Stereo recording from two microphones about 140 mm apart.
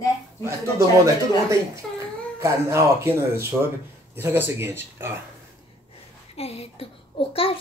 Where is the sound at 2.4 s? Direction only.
20° right (ahead or behind).